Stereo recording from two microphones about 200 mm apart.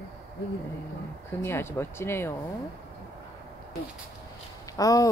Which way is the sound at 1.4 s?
10° left (ahead or behind).